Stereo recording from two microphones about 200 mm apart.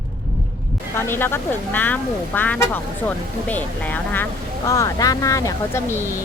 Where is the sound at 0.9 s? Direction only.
10° left (ahead or behind).